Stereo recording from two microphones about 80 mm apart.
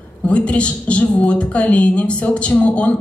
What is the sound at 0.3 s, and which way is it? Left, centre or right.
A woman's voice, centre.